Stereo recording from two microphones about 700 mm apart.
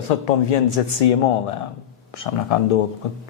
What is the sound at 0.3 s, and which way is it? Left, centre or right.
Speech, left.